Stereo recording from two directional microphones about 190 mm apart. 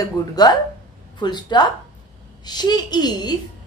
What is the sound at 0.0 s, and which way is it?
A woman's voice, 20° left (ahead or behind).